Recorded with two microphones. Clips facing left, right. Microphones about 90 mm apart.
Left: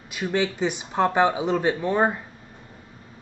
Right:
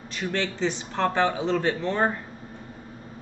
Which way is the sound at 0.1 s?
10° left (ahead or behind).